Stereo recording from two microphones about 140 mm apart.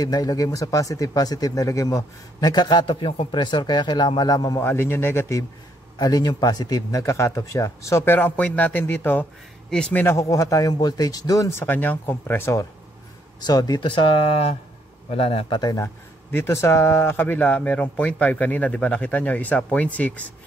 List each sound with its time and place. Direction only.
0.0 s speech: 25° left (ahead or behind)
5.9 s speech: 25° left (ahead or behind); by 15.6 s 45° left (ahead or behind)
15.6 s speech: 20° left (ahead or behind)